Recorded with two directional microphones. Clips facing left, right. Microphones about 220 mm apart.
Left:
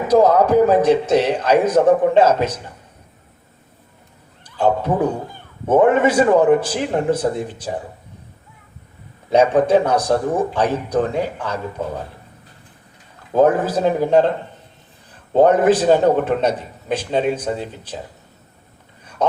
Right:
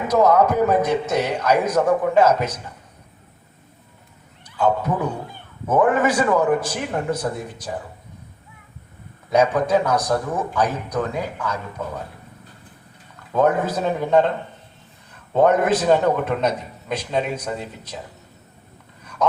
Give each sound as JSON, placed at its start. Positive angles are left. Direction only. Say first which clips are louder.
{"t": 0.1, "sound": "a man's voice", "louder": "left 4 dB", "side_deg": 30}
{"t": 4.5, "sound": "speech", "louder": "left 3 dB", "side_deg": 30}
{"t": 9.3, "sound": "speech", "louder": "left 4 dB", "side_deg": 30}
{"t": 13.3, "sound": "a man's voice", "louder": "left 4 dB", "side_deg": 30}
{"t": 19.2, "sound": "a sound", "louder": "left 1 dB", "side_deg": 30}